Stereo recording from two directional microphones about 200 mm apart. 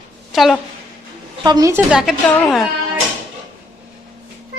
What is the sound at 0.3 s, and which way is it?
Speech, centre (ahead or behind).